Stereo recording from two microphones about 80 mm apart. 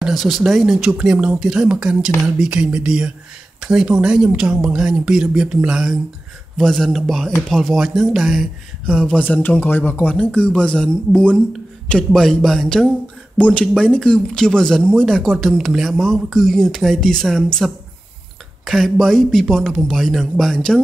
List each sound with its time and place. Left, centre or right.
0.0 s speech: centre
6.6 s speech: centre
9.0 s speech: centre